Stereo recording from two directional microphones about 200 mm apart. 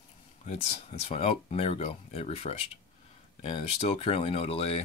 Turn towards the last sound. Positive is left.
turn(degrees=30)  # may be behind; listen again after turning